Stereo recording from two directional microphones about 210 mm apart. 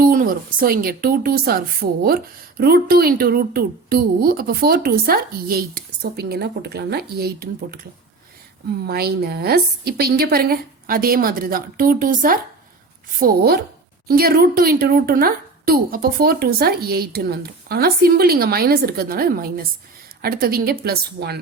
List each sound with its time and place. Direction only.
0.0 s a woman's voice: 40° right (ahead or behind)
8.9 s a woman's voice: 50° right (ahead or behind)